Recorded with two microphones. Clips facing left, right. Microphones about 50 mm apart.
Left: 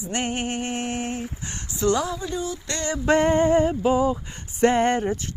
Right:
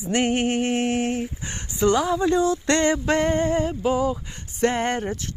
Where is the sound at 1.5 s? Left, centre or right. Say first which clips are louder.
Right 2 dB; centre.